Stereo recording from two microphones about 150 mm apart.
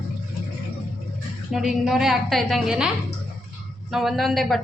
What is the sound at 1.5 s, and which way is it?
A woman's voice, centre (ahead or behind).